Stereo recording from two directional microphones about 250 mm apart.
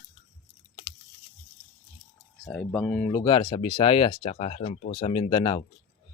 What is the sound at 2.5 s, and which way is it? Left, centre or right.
Speech, centre.